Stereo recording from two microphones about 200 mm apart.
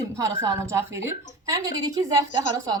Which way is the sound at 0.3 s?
15° right (ahead or behind).